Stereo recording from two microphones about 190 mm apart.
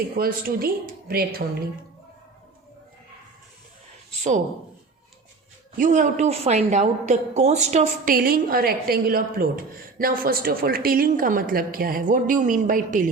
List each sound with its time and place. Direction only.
0.2 s a woman's voice: 50° right (ahead or behind)
5.7 s a woman's voice: 40° right (ahead or behind)